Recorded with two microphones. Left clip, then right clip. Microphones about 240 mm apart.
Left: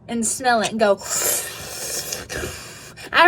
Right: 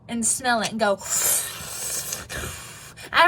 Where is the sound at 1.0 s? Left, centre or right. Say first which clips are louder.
Left 2 dB; centre.